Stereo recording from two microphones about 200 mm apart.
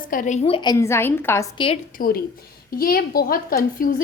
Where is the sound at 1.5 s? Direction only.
25° left (ahead or behind).